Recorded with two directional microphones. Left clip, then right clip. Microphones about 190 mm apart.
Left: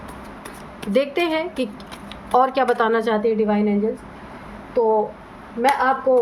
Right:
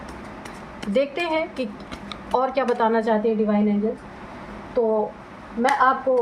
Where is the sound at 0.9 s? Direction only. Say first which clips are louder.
Left 2 dB; 40° left (ahead or behind).